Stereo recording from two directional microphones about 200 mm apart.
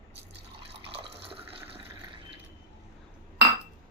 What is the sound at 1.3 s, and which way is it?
Water, 25° right (ahead or behind).